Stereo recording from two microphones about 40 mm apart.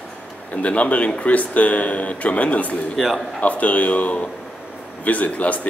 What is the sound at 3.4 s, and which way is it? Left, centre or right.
Speech, left.